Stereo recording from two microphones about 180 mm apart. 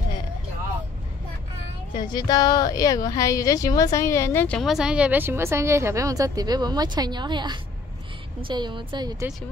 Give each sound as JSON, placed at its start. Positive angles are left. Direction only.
{"t": 2.0, "sound": "a woman's voice", "side_deg": 25}
{"t": 4.6, "sound": "a woman's voice", "side_deg": 0}